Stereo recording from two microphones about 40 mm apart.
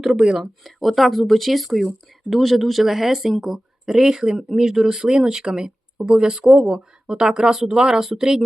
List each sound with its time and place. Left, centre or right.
0.0 s speech: centre
0.9 s speech: centre